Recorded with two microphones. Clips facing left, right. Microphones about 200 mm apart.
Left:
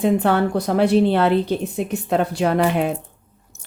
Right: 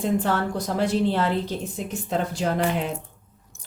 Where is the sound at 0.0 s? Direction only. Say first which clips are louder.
Left 6 dB; 65° left (ahead or behind).